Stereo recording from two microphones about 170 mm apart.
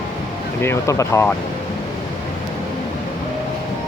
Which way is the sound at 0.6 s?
15° left (ahead or behind).